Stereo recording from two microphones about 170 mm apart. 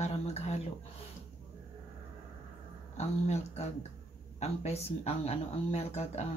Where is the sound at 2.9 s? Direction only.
40° left (ahead or behind).